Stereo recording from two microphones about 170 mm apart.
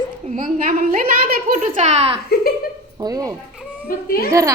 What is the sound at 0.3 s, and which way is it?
A woman's voice, 45° right (ahead or behind).